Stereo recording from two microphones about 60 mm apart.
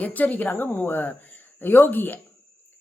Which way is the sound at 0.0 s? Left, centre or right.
Left.